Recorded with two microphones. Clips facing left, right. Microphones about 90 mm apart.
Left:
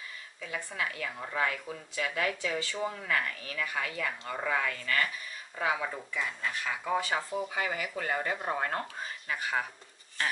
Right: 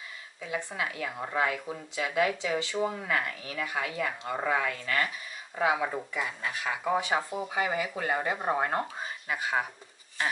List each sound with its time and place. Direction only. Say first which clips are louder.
0.4 s speech: right 3 dB; 20° right (ahead or behind)